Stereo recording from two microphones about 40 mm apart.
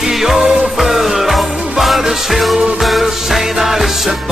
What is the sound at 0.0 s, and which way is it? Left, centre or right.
Music, centre.